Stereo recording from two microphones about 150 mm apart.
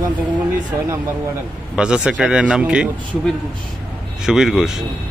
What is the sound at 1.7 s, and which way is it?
A man's voice, 5° right (ahead or behind).